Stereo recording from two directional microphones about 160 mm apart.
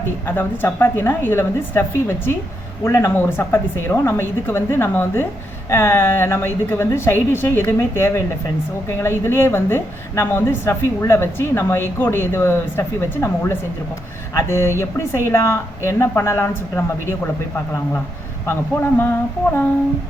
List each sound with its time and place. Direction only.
0.3 s a woman's voice: 15° left (ahead or behind)
18.4 s a woman's voice: 15° left (ahead or behind)